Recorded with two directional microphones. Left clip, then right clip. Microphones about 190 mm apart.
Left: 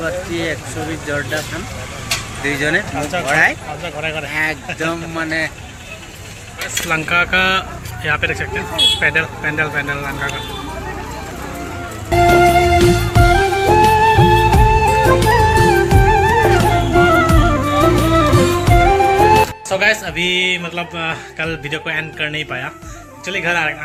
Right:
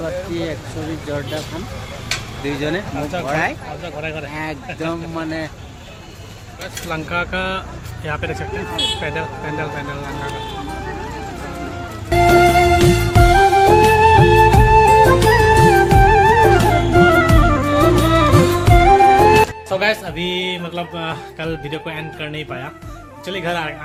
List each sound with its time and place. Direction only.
2.4 s speech: 20° right (ahead or behind)
2.9 s speech: 5° left (ahead or behind)
3.2 s speech: 20° right (ahead or behind)
3.8 s speech: 5° left (ahead or behind)
4.3 s speech: 20° right (ahead or behind)
4.7 s speech: centre (ahead or behind)
5.2 s speech: 20° right (ahead or behind)
6.8 s speech: 5° right (ahead or behind)
12.1 s music: centre (ahead or behind)
23.2 s speech: 15° right (ahead or behind)